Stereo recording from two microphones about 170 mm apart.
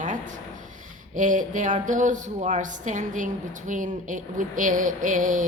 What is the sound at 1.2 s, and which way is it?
Speech, 50° right (ahead or behind).